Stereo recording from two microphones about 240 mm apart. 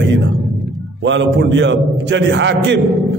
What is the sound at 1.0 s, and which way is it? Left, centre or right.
A man's voice, right.